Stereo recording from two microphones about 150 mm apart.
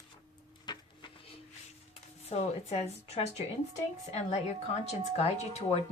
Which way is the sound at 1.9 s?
45° left (ahead or behind).